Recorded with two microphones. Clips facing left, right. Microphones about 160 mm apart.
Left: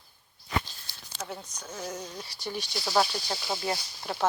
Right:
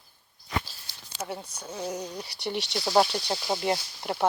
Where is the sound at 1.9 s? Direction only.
10° right (ahead or behind).